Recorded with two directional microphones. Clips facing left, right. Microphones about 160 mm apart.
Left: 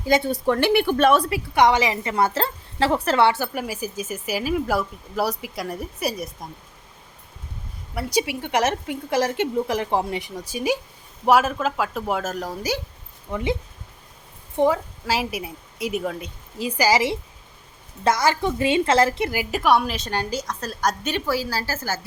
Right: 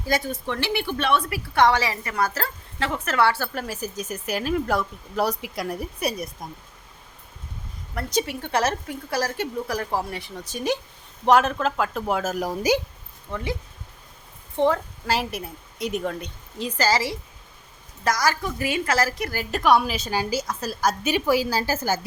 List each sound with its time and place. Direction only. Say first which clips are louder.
0.0 s speech: left 5 dB; 20° left (ahead or behind)
0.3 s speech: left 8 dB; 40° left (ahead or behind)
1.3 s a woman's voice: left 2 dB; 20° left (ahead or behind); by 6.5 s centre (ahead or behind)
7.9 s a woman's voice: left 2 dB; 10° left (ahead or behind)
12.4 s a woman's voice: right 4 dB; 15° right (ahead or behind)
13.3 s a woman's voice: left 5 dB; 20° left (ahead or behind)
14.5 s a woman's voice: left 1 dB; 10° left (ahead or behind)
19.3 s a woman's voice: even; 10° left (ahead or behind); by 22.0 s 15° right (ahead or behind)